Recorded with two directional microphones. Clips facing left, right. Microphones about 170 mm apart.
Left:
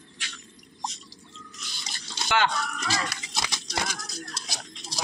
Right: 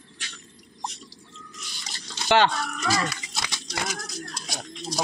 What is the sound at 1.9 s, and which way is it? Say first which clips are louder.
Drip: right 6 dB; 30° right (ahead or behind).